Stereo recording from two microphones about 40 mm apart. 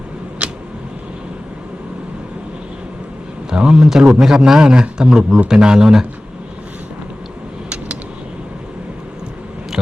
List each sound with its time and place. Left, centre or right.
0.4 s a sound: right
3.5 s speech: right
3.8 s a man's voice: centre